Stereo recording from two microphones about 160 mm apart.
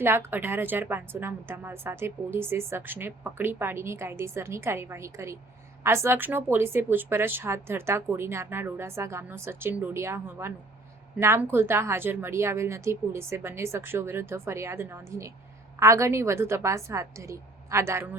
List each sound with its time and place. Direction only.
0.0 s a woman's voice: 15° right (ahead or behind)